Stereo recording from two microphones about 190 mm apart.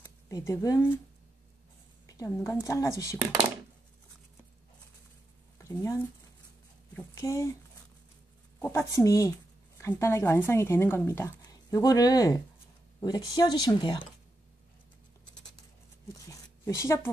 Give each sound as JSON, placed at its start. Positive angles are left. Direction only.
{"t": 0.0, "sound": "speech", "side_deg": 15}
{"t": 2.0, "sound": "speech", "side_deg": 15}
{"t": 5.6, "sound": "speech", "side_deg": 15}
{"t": 8.5, "sound": "speech", "side_deg": 15}
{"t": 16.3, "sound": "a sound", "side_deg": 15}